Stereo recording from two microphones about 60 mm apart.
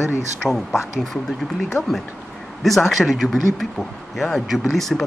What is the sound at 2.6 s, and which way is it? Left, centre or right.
Speech, centre.